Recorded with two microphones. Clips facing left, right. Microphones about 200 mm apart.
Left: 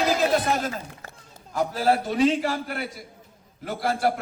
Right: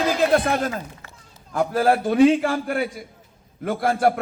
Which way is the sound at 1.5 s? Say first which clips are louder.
Right 3 dB; 55° right (ahead or behind).